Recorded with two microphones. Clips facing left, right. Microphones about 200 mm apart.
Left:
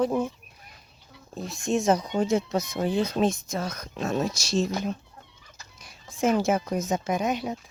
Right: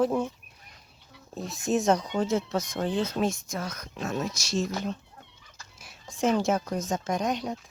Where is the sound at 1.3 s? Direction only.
Centre (ahead or behind); by 4.7 s 30° left (ahead or behind).